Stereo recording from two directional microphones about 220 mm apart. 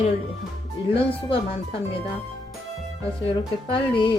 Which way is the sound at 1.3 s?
25° left (ahead or behind).